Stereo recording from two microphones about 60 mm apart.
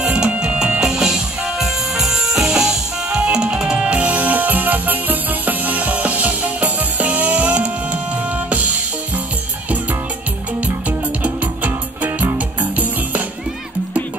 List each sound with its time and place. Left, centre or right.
0.0 s music: centre
10.9 s music: right